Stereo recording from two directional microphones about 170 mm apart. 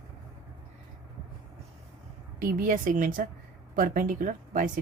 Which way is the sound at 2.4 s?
55° right (ahead or behind).